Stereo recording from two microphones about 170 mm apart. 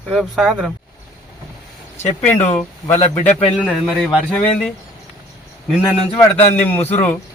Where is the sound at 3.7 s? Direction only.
5° left (ahead or behind).